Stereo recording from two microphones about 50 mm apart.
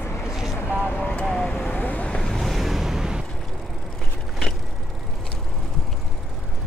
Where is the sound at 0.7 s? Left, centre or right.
Left.